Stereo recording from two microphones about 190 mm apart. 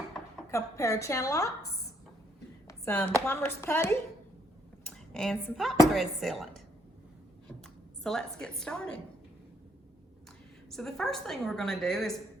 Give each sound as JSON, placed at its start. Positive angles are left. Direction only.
{"t": 0.5, "sound": "a woman's voice", "side_deg": 15}
{"t": 2.6, "sound": "a woman's voice", "side_deg": 10}
{"t": 8.0, "sound": "a woman's voice", "side_deg": 5}
{"t": 10.7, "sound": "a woman's voice", "side_deg": 0}